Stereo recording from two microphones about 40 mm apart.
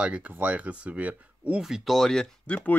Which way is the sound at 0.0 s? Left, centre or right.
Right.